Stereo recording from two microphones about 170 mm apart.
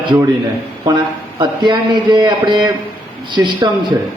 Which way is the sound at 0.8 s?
25° right (ahead or behind).